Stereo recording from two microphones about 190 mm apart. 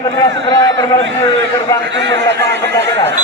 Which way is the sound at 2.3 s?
15° left (ahead or behind).